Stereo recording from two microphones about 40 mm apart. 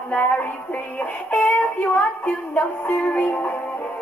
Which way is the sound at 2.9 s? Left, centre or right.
Left.